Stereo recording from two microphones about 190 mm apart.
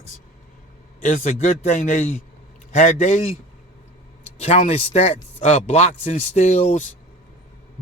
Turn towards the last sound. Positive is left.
turn(degrees=40)  # may be behind; listen again after turning